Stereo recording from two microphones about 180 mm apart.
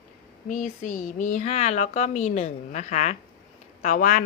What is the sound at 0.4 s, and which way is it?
Speech, 45° left (ahead or behind).